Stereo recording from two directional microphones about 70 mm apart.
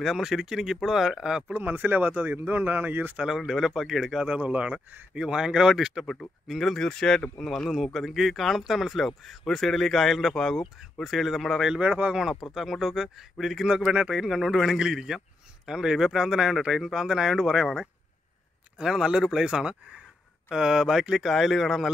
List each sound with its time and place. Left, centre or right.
0.0 s speech: centre
1.5 s speech: right
3.2 s speech: centre
11.7 s speech: centre
12.5 s speech: centre
18.8 s speech: centre